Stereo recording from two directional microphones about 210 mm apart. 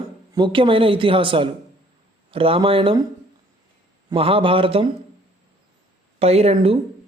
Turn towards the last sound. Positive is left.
turn(degrees=-25)  # may be behind; listen again after turning